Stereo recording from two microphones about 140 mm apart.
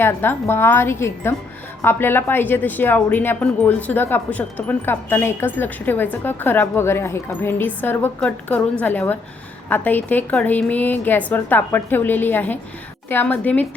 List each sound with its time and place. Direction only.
0.0 s a woman's voice: 15° left (ahead or behind)